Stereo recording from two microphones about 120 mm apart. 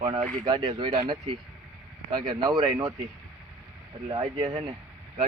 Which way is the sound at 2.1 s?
35° right (ahead or behind).